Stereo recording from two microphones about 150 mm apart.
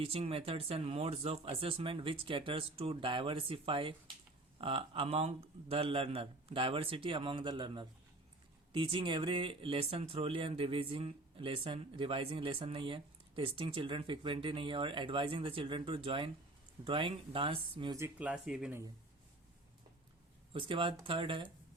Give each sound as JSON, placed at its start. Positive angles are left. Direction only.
{"t": 0.0, "sound": "speech", "side_deg": -40}
{"t": 17.9, "sound": "speech", "side_deg": -10}
{"t": 20.5, "sound": "speech", "side_deg": -35}